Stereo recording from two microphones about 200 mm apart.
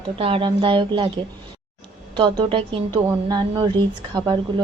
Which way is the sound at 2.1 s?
25° right (ahead or behind).